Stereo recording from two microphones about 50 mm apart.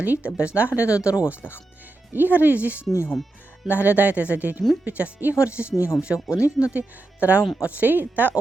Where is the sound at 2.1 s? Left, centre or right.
Right.